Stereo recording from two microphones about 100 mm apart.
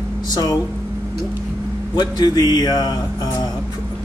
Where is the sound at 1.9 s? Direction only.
45° left (ahead or behind).